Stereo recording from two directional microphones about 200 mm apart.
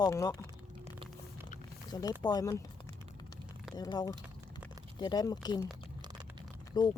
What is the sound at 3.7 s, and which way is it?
Speech, 20° left (ahead or behind).